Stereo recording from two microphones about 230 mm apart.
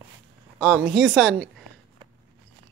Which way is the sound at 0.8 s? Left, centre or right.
Centre.